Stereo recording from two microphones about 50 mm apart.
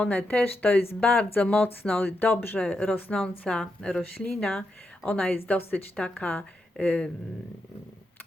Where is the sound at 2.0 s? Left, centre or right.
Left.